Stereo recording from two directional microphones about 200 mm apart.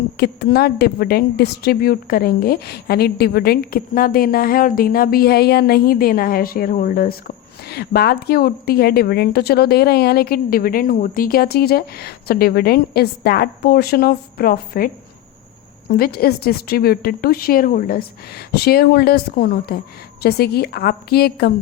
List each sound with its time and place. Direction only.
0.2 s a woman's voice: 50° left (ahead or behind)
16.0 s a woman's voice: 50° left (ahead or behind)